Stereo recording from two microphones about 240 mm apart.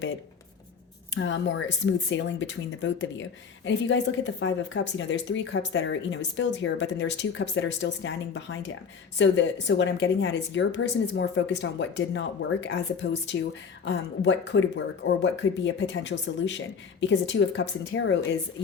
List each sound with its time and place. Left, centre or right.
1.1 s speech: left